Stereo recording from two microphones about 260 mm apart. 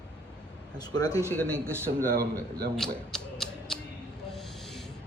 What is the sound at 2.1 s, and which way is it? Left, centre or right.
Speech, right.